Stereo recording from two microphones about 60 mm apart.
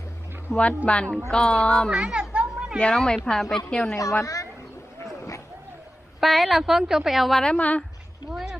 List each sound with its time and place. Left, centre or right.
0.5 s speech: left
0.9 s speech: left
1.3 s speech: centre
2.0 s speech: centre
2.3 s children playing: right
2.7 s speech: centre
3.9 s a woman's voice: left
6.1 s a woman's voice: centre
7.4 s speech: centre
8.3 s a sound: centre